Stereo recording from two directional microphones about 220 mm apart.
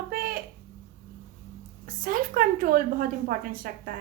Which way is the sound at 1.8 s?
40° right (ahead or behind).